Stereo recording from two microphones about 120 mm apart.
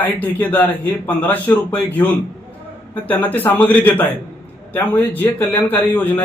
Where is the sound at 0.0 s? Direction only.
15° left (ahead or behind).